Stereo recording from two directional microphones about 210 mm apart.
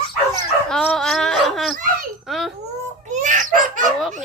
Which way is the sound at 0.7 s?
5° left (ahead or behind).